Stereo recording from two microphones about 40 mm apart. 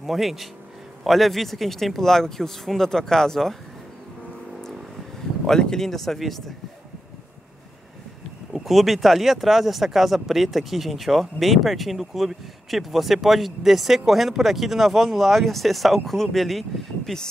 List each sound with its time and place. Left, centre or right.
0.0 s speech: centre
5.5 s speech: centre
5.9 s speech: centre
8.5 s speech: centre